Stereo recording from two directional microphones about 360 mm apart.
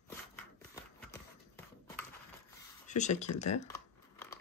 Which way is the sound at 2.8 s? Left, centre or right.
Centre.